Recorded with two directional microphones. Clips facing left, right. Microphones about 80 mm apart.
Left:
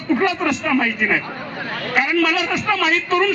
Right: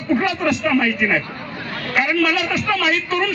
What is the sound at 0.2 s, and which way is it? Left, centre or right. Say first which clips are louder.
A man's voice: even; left.